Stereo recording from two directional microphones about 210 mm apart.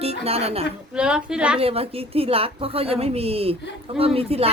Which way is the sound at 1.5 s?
25° right (ahead or behind).